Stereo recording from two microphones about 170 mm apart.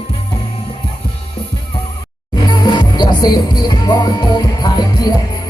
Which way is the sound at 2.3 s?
25° left (ahead or behind).